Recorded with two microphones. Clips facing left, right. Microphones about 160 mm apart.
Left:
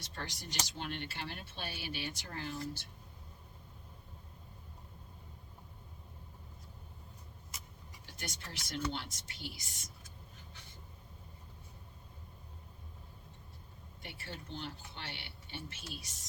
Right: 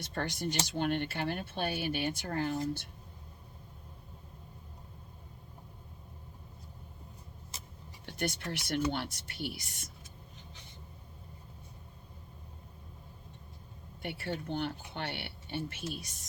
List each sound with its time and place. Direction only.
0.0 s speech: 55° right (ahead or behind)
7.5 s vehicle: 25° right (ahead or behind)
8.0 s speech: 60° right (ahead or behind)
14.0 s speech: 60° right (ahead or behind)